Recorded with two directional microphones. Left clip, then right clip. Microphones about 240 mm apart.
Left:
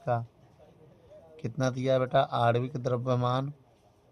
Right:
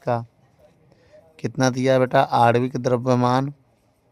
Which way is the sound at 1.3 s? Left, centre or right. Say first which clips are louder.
Right 10 dB; right.